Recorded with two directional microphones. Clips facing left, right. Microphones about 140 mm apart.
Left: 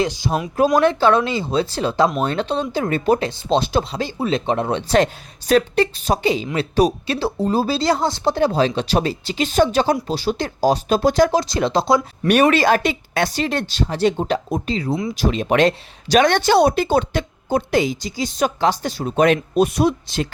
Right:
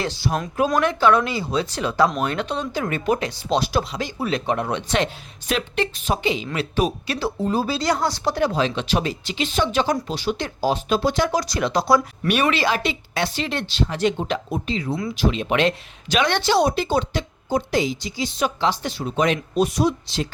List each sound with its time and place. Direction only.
0.0 s speech: 15° left (ahead or behind)
0.8 s speech: 30° left (ahead or behind)
9.8 s speech: 30° left (ahead or behind)
11.3 s speech: 25° left (ahead or behind)
12.3 s speech: 45° left (ahead or behind)
18.0 s speech: 40° left (ahead or behind)